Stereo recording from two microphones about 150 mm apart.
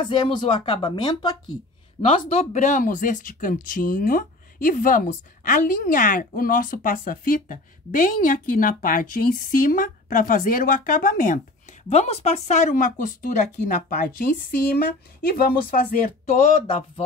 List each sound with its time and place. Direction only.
0.0 s speech: 30° left (ahead or behind)
0.7 s speech: 30° left (ahead or behind)
2.0 s speech: 45° left (ahead or behind); by 11.4 s 60° left (ahead or behind)
11.9 s speech: 45° left (ahead or behind)